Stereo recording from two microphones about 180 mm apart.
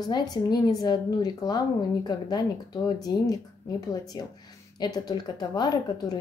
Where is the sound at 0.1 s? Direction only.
20° left (ahead or behind).